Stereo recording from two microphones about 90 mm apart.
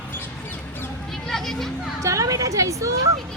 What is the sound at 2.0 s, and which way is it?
Speech, 40° right (ahead or behind).